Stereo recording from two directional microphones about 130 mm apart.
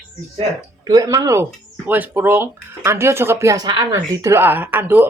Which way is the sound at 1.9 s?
15° right (ahead or behind).